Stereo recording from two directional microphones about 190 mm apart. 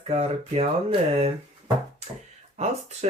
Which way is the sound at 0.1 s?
30° right (ahead or behind).